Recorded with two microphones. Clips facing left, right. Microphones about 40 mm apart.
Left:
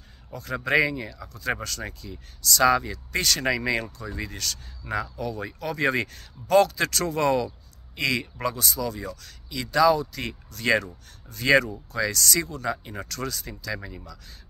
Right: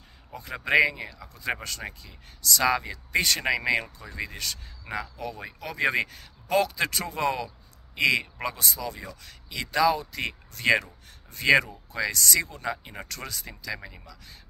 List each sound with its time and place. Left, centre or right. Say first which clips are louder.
0.3 s speech: even; centre
1.6 s speech: left 2 dB; right
2.9 s speech: right 1 dB; right
12.6 s speech: left 3 dB; centre
13.0 s speech: left 5 dB; right